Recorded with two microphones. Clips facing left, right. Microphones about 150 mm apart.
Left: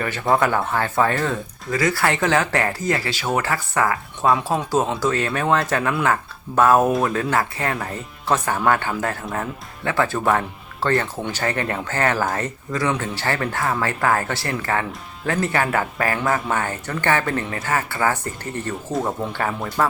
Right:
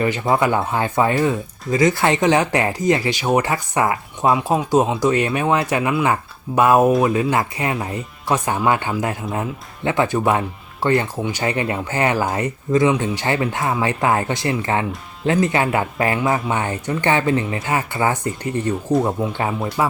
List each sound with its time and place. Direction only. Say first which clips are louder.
0.3 s speech: left 1 dB; 15° right (ahead or behind)